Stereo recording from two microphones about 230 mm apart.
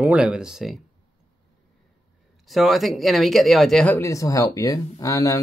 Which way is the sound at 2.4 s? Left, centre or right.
Centre.